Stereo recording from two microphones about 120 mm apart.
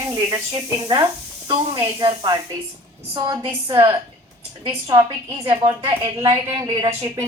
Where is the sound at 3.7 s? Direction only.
25° right (ahead or behind).